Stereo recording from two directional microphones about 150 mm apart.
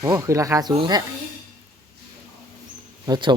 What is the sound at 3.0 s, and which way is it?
Speech, 30° right (ahead or behind).